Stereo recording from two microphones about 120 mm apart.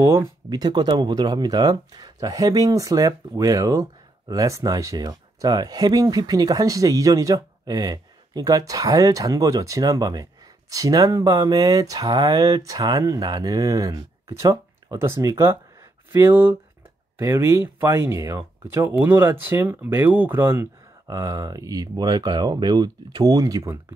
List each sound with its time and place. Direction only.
0.0 s speech: 25° right (ahead or behind)
0.6 s speech: 35° right (ahead or behind)